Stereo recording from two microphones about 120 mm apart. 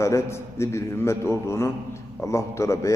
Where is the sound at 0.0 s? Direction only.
25° left (ahead or behind).